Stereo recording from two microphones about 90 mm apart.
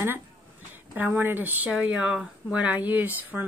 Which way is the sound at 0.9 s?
20° right (ahead or behind).